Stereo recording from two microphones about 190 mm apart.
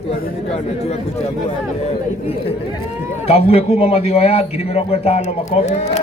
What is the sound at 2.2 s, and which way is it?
A man's voice, 30° left (ahead or behind).